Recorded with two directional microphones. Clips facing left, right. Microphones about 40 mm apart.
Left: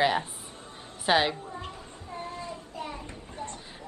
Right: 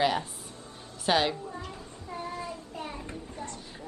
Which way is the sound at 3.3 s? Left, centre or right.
Left.